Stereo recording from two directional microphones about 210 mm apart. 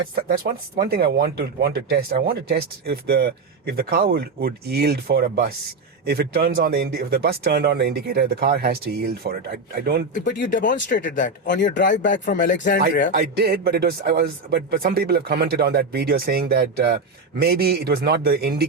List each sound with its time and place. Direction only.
0.2 s speech: 45° right (ahead or behind)
10.2 s speech: 55° left (ahead or behind)
10.5 s speech: 40° left (ahead or behind)
13.1 s speech: 50° right (ahead or behind)